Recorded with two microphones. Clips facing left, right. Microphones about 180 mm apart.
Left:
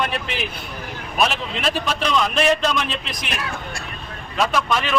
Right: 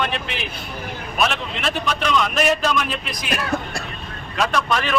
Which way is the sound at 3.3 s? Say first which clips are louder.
Right 7 dB; 45° right (ahead or behind).